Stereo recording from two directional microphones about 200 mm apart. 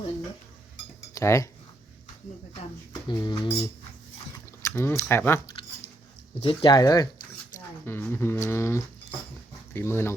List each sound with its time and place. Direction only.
1.1 s speech: 15° left (ahead or behind)
2.9 s speech: 20° left (ahead or behind)
4.6 s speech: 10° left (ahead or behind)
6.4 s speech: 25° left (ahead or behind)